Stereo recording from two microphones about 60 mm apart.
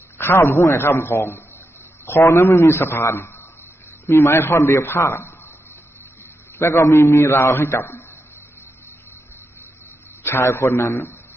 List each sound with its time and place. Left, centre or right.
0.2 s a man's voice: left
6.6 s a man's voice: left
10.2 s a man's voice: left